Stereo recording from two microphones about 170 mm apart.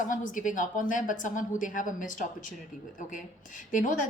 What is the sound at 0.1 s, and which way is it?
Speech, 50° left (ahead or behind).